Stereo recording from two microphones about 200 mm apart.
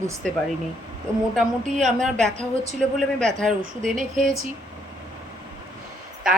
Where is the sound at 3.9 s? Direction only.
40° right (ahead or behind).